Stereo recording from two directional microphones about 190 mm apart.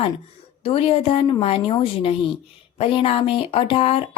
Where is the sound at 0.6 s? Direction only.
30° left (ahead or behind).